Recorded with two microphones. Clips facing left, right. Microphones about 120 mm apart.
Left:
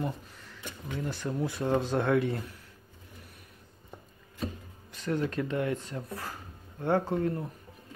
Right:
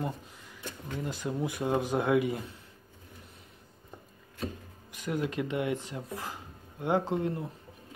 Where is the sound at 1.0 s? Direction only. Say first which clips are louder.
Left 1 dB; 15° right (ahead or behind).